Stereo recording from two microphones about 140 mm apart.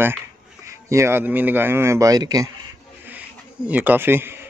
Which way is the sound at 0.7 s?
20° right (ahead or behind).